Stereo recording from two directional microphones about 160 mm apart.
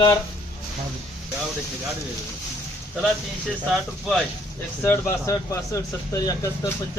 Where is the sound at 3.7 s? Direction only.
Centre (ahead or behind).